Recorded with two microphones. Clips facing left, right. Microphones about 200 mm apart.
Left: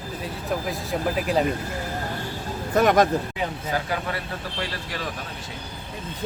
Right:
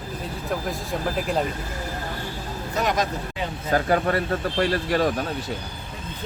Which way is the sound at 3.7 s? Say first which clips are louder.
Right 10 dB; 50° right (ahead or behind).